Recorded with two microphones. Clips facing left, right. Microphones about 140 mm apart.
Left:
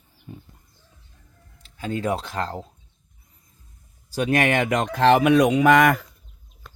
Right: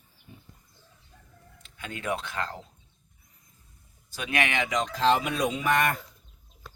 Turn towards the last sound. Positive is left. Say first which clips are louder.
# left 10 dB
turn(degrees=90)